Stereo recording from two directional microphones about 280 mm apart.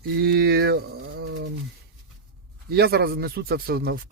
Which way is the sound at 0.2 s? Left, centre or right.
Right.